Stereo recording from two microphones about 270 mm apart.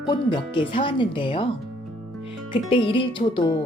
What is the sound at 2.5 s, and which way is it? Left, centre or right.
Speech, centre.